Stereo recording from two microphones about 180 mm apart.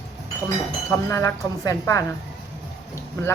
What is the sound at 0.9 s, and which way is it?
Speech, 15° left (ahead or behind).